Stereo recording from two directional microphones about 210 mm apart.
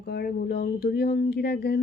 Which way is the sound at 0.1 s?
50° left (ahead or behind).